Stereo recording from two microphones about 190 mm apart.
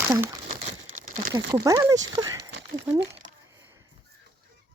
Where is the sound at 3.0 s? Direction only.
30° right (ahead or behind).